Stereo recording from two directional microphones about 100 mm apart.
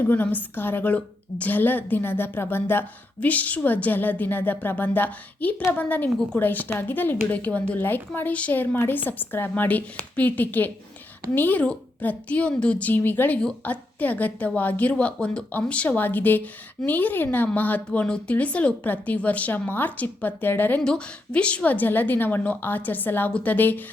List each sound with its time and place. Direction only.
0.0 s a woman's voice: 20° left (ahead or behind)